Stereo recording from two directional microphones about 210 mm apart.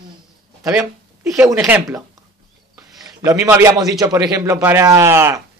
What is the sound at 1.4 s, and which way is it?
Speech, 5° right (ahead or behind).